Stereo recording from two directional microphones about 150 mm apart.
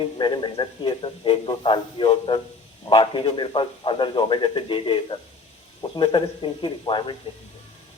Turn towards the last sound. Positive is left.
turn(degrees=35)  # may be behind; listen again after turning